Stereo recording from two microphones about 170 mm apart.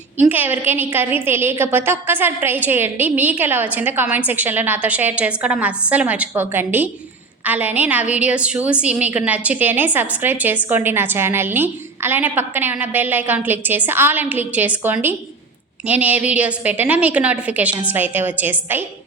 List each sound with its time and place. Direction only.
0.2 s a woman's voice: 10° right (ahead or behind)